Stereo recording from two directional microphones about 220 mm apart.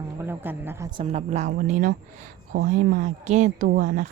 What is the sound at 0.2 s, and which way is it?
A woman's voice, 10° right (ahead or behind).